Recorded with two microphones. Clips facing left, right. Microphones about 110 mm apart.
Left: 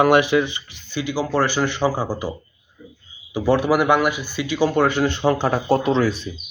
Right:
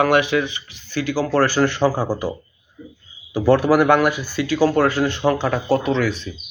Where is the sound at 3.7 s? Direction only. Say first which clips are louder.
Right 2 dB; 10° left (ahead or behind); by 6.1 s 30° left (ahead or behind).